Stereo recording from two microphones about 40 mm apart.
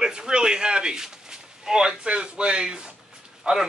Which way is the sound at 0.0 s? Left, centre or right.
Centre.